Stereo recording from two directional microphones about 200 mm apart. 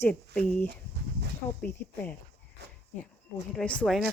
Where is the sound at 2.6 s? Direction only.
55° right (ahead or behind).